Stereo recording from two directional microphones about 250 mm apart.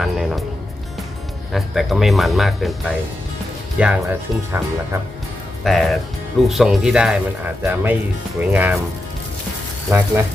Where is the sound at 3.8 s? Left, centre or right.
Centre.